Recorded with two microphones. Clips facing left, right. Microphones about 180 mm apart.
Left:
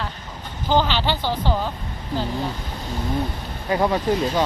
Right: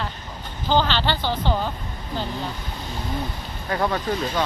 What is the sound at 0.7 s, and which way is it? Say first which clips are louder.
Speech: left 1 dB; 10° left (ahead or behind).